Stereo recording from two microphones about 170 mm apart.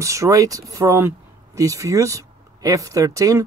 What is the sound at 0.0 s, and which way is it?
Speech, 20° right (ahead or behind).